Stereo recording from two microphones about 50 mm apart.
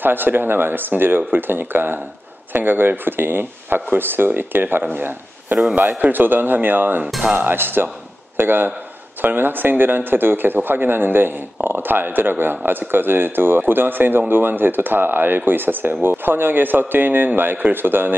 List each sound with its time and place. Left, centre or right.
0.0 s speech: right